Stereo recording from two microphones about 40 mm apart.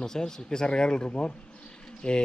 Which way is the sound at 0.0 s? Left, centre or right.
Centre.